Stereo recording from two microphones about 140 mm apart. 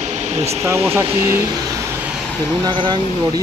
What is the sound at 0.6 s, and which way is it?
Speech, 20° right (ahead or behind).